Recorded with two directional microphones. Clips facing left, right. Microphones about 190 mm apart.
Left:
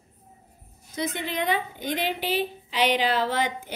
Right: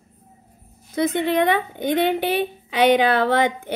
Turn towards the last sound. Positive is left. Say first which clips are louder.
# right 7 dB
turn(degrees=-60)  # may be behind; listen again after turning